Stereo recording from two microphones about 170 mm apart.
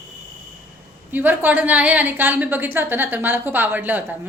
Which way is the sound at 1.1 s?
10° right (ahead or behind).